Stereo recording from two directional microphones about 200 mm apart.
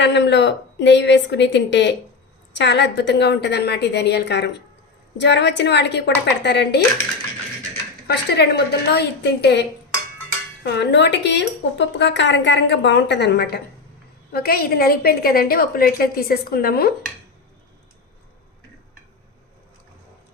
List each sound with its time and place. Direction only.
0.0 s speech: 60° left (ahead or behind)
8.0 s a woman's voice: 55° left (ahead or behind)